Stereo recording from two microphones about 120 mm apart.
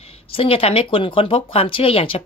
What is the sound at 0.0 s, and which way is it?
A woman's voice, 50° left (ahead or behind).